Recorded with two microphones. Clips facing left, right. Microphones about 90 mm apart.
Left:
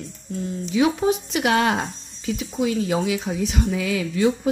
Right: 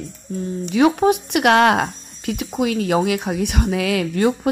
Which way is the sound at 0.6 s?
60° right (ahead or behind).